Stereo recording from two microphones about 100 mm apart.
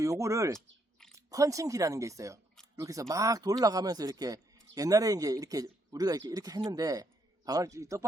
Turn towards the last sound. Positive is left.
turn(degrees=-30)  # may be behind; listen again after turning